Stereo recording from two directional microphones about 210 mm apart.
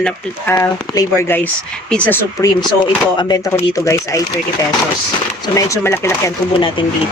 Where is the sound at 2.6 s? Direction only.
20° left (ahead or behind).